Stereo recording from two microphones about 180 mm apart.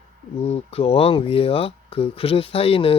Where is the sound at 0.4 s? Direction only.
35° left (ahead or behind).